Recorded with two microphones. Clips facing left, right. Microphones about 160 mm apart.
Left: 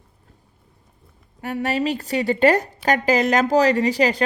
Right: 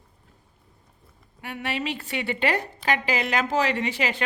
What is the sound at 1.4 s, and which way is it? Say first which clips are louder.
A woman's voice: left 8 dB; 40° left (ahead or behind).